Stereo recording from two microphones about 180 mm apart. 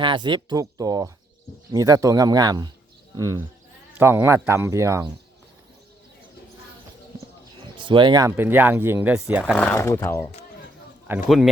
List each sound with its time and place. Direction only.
0.0 s speech: 25° right (ahead or behind)
7.8 s speech: 25° right (ahead or behind); by 9.4 s 5° right (ahead or behind)
9.6 s speech: 10° left (ahead or behind)
11.1 s speech: 10° right (ahead or behind)